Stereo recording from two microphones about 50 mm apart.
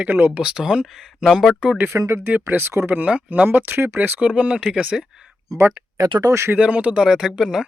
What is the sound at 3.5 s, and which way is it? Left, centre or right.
Speech, right.